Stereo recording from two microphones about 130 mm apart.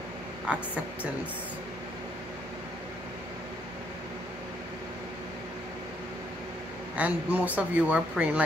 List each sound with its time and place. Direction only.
7.0 s speech: 15° right (ahead or behind)